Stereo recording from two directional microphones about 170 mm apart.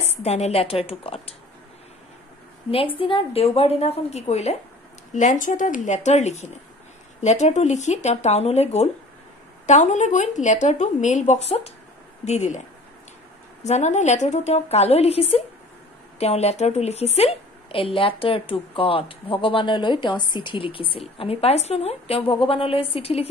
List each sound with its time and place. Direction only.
0.2 s a woman's voice: 40° left (ahead or behind)
2.7 s a woman's voice: 30° left (ahead or behind)
13.7 s a woman's voice: 45° left (ahead or behind)